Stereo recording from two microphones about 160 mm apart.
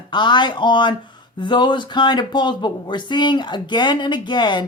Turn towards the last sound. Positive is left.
turn(degrees=30)  # may be behind; listen again after turning